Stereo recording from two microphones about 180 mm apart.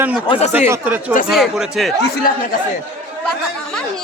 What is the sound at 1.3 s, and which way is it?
Speech, centre (ahead or behind).